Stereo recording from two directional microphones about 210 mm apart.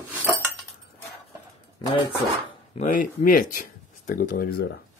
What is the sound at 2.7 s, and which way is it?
Speech, 35° left (ahead or behind).